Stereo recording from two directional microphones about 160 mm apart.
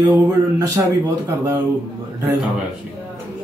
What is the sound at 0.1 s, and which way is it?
Speech, 15° right (ahead or behind).